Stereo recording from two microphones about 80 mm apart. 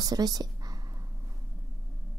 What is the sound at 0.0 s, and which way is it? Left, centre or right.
Speech, right.